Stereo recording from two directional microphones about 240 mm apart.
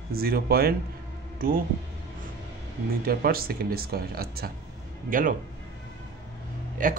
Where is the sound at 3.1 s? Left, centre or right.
Right.